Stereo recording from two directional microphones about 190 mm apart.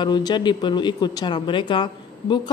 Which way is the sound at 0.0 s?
25° left (ahead or behind).